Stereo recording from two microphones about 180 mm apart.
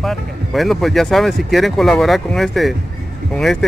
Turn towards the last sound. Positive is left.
turn(degrees=0)  # may be behind; listen again after turning